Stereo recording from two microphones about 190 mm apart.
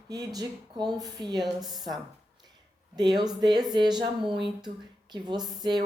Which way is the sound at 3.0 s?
20° right (ahead or behind).